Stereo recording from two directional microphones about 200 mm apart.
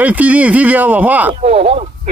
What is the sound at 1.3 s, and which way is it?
Speech, 30° right (ahead or behind).